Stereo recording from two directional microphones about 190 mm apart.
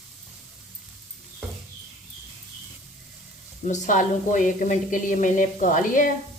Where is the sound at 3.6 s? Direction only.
40° left (ahead or behind).